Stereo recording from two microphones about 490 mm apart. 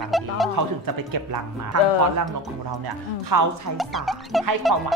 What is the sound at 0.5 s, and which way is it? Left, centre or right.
Speech, right.